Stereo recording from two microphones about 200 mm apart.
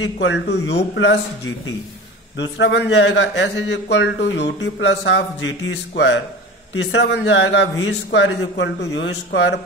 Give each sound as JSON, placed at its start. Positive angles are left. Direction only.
{"t": 0.0, "sound": "a man's voice", "side_deg": 65}
{"t": 2.3, "sound": "a man's voice", "side_deg": 65}